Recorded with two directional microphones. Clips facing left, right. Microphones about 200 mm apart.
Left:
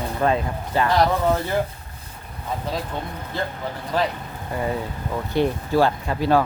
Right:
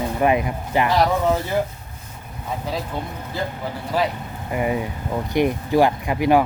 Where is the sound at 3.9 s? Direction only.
5° right (ahead or behind).